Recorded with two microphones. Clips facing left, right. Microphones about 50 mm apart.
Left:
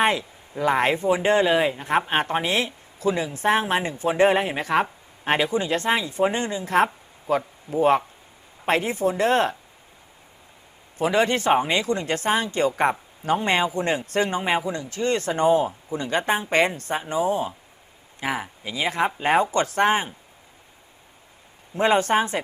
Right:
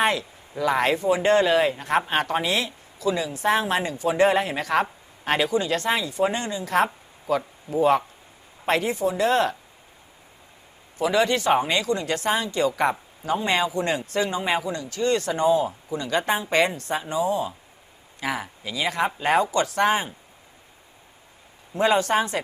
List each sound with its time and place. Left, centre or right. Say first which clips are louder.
0.0 s a sound: left 1 dB; left
0.6 s speech: left 1 dB; left
10.9 s speech: even; left
11.5 s speech: left 2 dB; centre
11.8 s speech: even; left
14.4 s speech: left 1 dB; left
21.8 s speech: left 1 dB; left